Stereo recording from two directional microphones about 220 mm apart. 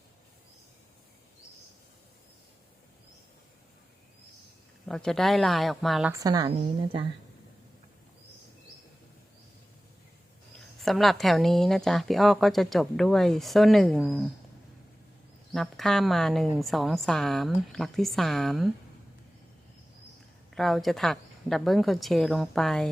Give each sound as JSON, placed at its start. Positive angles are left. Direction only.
{"t": 4.9, "sound": "a woman's voice", "side_deg": 0}
{"t": 6.1, "sound": "a woman's voice", "side_deg": -15}
{"t": 10.8, "sound": "a woman's voice", "side_deg": 0}
{"t": 15.5, "sound": "a woman's voice", "side_deg": 0}
{"t": 20.5, "sound": "a woman's voice", "side_deg": 0}